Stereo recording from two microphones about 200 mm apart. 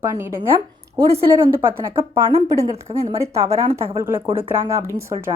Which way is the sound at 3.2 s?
15° right (ahead or behind).